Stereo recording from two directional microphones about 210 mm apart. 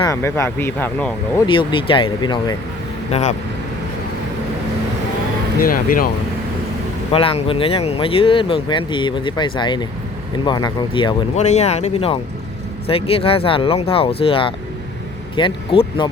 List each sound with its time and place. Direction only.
0.0 s speech: 15° left (ahead or behind)
1.5 s speech: 25° left (ahead or behind)
3.1 s speech: 35° left (ahead or behind)
5.5 s speech: 45° left (ahead or behind)
7.1 s speech: 25° left (ahead or behind)
11.3 s speech: 30° left (ahead or behind)